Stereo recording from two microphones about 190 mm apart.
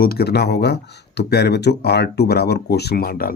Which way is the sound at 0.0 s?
55° left (ahead or behind).